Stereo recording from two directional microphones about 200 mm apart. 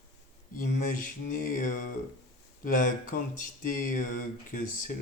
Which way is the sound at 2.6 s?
40° left (ahead or behind).